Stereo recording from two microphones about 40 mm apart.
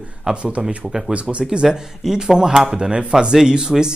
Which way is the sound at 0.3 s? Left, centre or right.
Right.